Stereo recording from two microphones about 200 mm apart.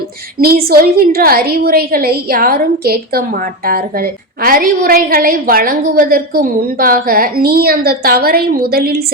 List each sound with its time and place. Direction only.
0.3 s a woman's voice: 50° right (ahead or behind)